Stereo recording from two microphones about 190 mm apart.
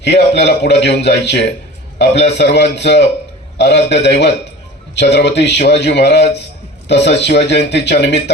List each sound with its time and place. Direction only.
0.0 s speech: 65° left (ahead or behind)